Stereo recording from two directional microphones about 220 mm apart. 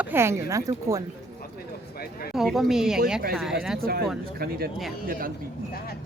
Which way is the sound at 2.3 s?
Centre (ahead or behind).